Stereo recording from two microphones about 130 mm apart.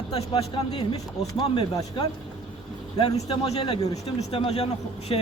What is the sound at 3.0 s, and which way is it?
Speech, 50° left (ahead or behind).